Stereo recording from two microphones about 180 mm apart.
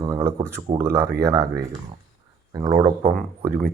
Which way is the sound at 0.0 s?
20° right (ahead or behind).